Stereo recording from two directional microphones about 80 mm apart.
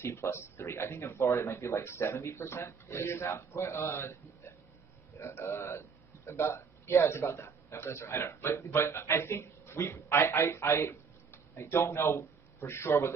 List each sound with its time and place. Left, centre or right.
0.0 s a man's voice: left
5.2 s a man's voice: left